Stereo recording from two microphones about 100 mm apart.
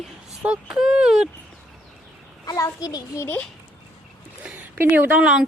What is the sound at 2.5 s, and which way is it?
Speech, 40° left (ahead or behind).